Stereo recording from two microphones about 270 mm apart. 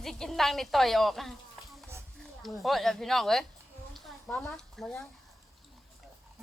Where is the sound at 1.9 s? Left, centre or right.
Centre.